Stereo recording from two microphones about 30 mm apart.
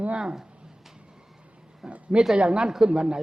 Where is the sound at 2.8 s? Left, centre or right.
Right.